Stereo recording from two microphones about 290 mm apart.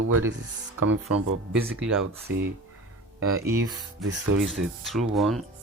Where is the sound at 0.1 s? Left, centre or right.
Right.